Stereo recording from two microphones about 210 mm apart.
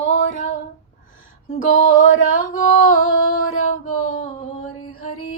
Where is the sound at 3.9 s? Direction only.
40° left (ahead or behind).